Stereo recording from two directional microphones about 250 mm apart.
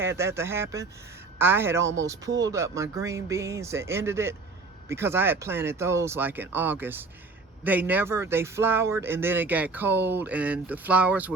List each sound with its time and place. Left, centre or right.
0.0 s speech: centre